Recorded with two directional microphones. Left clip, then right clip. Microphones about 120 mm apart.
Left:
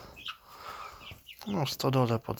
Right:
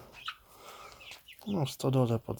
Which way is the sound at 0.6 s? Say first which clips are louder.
Left 8 dB; 25° right (ahead or behind).